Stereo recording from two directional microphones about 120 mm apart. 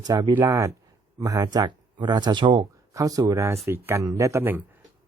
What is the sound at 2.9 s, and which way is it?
Speech, 30° right (ahead or behind).